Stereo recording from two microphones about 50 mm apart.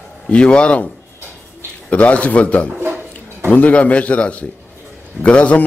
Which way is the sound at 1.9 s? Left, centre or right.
Left.